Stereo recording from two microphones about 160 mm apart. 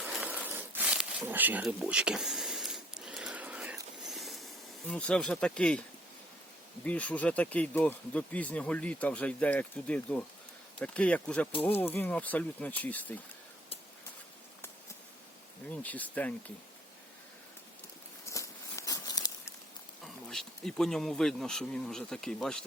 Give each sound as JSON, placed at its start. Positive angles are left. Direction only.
{"t": 0.0, "sound": "a sound", "side_deg": -5}
{"t": 4.9, "sound": "speech", "side_deg": 5}
{"t": 6.8, "sound": "speech", "side_deg": 10}
{"t": 15.7, "sound": "speech", "side_deg": 10}
{"t": 18.3, "sound": "a sound", "side_deg": 20}
{"t": 20.3, "sound": "speech", "side_deg": 0}